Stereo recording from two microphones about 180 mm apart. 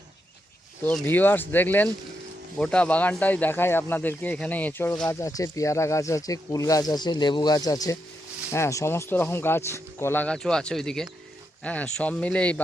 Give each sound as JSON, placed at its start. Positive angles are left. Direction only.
{"t": 0.9, "sound": "speech", "side_deg": 10}